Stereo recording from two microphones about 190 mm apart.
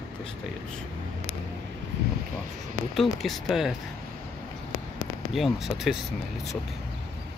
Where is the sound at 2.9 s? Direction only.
Centre (ahead or behind).